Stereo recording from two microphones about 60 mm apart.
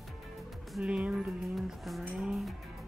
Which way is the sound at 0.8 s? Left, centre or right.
Centre.